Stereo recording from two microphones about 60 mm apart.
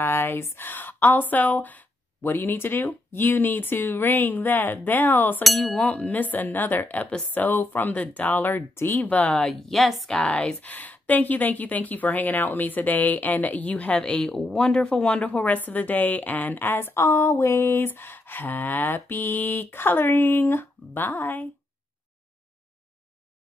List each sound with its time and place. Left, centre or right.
0.0 s speech: left
5.4 s a woman's voice: centre
5.8 s a woman's voice: left
7.3 s speech: left
9.3 s a woman's voice: centre
10.1 s speech: centre
10.6 s a woman's voice: left
17.0 s a sound: left
17.6 s speech: left